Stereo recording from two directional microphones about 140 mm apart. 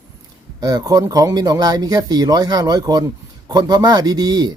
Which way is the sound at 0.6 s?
25° right (ahead or behind).